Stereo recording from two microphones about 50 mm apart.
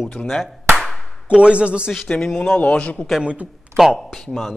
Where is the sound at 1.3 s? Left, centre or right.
Right.